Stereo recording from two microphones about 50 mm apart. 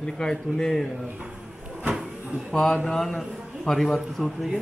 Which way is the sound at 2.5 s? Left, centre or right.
Centre.